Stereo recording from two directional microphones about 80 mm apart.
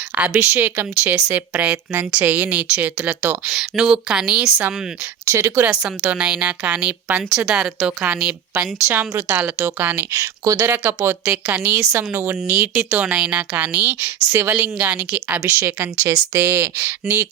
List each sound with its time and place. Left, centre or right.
0.2 s a woman's voice: right
5.2 s speech: right
5.6 s a woman's voice: centre
10.1 s speech: right
10.7 s speech: right
15.4 s speech: right